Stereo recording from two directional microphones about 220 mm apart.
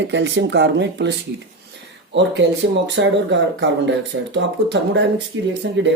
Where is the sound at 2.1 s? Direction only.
55° right (ahead or behind).